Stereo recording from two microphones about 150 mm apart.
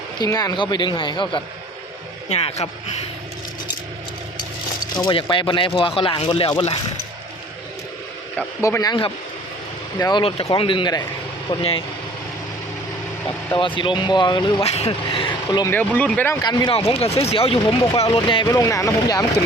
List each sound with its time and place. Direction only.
0.2 s speech: 25° left (ahead or behind)
2.3 s speech: 45° left (ahead or behind)
4.9 s speech: 30° left (ahead or behind)
8.6 s speech: 20° left (ahead or behind)
13.5 s speech: 35° left (ahead or behind)
14.7 s speech: 45° left (ahead or behind); by 15.7 s 30° left (ahead or behind)
15.7 s speech: 10° left (ahead or behind)
16.4 s speech: 30° left (ahead or behind)
18.4 s speech: 20° left (ahead or behind)